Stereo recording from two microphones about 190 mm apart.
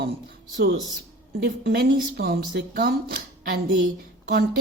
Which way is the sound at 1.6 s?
55° right (ahead or behind).